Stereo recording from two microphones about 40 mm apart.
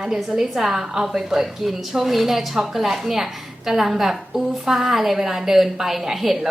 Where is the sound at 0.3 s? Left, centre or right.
Centre.